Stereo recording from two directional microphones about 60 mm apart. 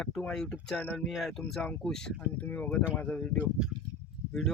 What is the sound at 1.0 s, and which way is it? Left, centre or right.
Speech, centre.